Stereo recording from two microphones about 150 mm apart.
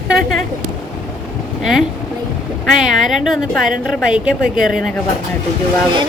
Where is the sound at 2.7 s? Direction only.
Centre (ahead or behind).